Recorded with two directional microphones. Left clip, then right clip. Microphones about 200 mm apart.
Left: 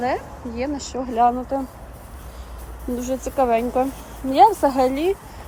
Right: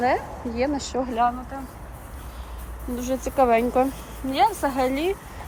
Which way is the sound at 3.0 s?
20° left (ahead or behind).